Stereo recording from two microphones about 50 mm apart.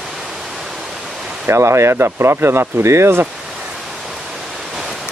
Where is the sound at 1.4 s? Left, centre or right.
Right.